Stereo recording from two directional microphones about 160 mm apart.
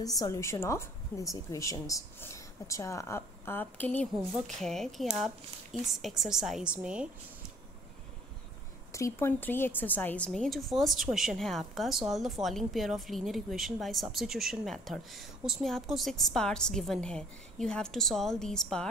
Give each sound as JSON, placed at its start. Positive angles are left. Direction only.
{"t": 0.2, "sound": "a woman's voice", "side_deg": 20}
{"t": 8.9, "sound": "a woman's voice", "side_deg": 15}